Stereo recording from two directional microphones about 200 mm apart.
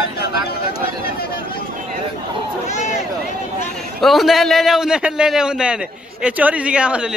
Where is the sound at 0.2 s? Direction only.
50° left (ahead or behind).